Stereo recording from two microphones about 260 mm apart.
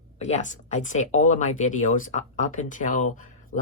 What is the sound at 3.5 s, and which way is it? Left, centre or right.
Speech, left.